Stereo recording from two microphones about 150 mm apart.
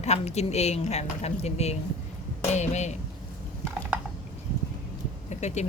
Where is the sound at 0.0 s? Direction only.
45° left (ahead or behind).